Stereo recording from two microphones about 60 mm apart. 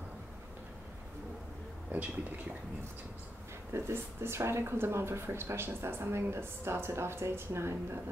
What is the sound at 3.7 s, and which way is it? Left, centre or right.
Speech, right.